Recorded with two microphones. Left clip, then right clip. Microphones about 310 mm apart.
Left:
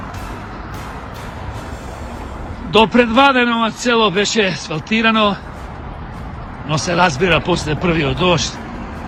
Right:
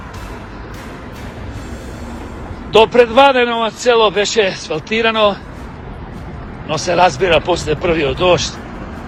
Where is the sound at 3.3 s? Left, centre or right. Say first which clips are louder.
Right 1 dB; centre.